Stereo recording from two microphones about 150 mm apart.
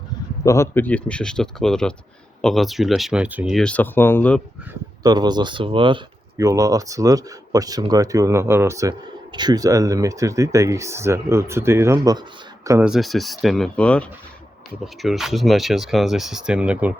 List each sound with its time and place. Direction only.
0.4 s speech: 20° left (ahead or behind); by 3.5 s 10° right (ahead or behind)
3.5 s speech: 5° left (ahead or behind)
5.0 s speech: 30° right (ahead or behind)
6.3 s speech: 20° right (ahead or behind)
12.8 s speech: centre (ahead or behind)